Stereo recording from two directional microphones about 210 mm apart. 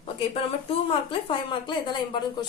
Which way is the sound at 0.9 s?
25° left (ahead or behind).